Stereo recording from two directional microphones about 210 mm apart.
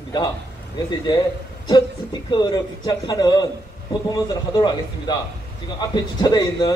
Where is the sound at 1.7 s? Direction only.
20° left (ahead or behind).